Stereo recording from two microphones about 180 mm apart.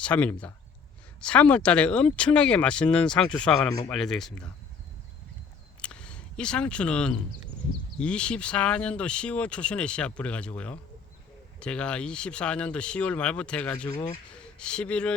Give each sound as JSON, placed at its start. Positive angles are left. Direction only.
{"t": 0.0, "sound": "speech", "side_deg": 10}
{"t": 3.7, "sound": "speech", "side_deg": 20}
{"t": 3.9, "sound": "speech", "side_deg": 0}
{"t": 5.8, "sound": "a sound", "side_deg": 5}
{"t": 7.9, "sound": "speech", "side_deg": 5}